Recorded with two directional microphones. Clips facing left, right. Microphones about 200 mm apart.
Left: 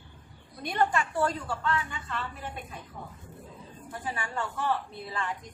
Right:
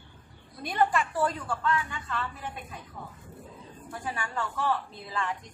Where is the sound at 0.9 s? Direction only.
Centre (ahead or behind).